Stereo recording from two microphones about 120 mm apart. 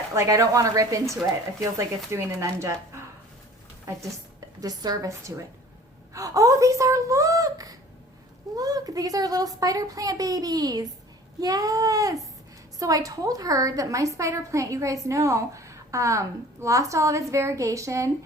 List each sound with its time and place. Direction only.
0.1 s a woman's voice: 25° right (ahead or behind)
2.0 s a woman's voice: 25° right (ahead or behind)
4.6 s a woman's voice: 35° right (ahead or behind)